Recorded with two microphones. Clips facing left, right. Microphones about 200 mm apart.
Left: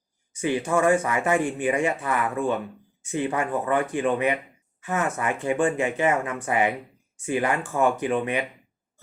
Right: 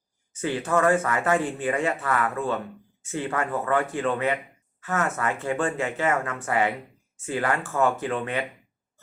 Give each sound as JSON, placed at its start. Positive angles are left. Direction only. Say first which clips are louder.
{"t": 0.3, "sound": "speech", "louder": "left 1 dB", "side_deg": 15}